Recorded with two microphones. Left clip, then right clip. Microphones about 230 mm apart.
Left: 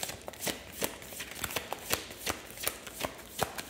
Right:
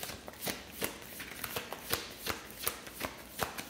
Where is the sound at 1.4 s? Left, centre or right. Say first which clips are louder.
Left 4 dB; left.